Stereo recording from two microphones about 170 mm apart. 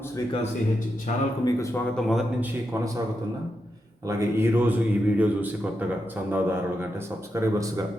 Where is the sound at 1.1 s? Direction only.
50° left (ahead or behind).